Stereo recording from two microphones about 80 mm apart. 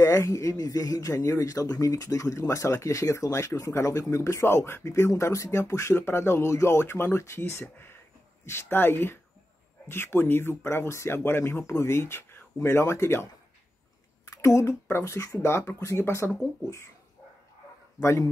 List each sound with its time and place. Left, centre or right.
0.0 s speech: left
18.0 s speech: left